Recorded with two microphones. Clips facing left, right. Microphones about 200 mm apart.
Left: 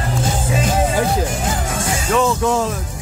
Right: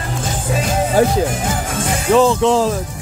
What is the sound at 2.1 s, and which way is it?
Music, 30° right (ahead or behind).